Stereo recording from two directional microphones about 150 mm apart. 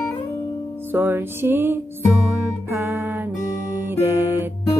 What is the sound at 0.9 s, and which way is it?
Music, 15° right (ahead or behind).